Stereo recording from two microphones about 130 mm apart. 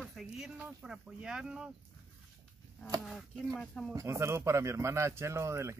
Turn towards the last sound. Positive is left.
turn(degrees=-20)  # may be behind; listen again after turning